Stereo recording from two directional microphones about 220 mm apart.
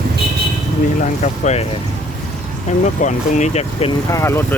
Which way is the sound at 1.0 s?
30° left (ahead or behind).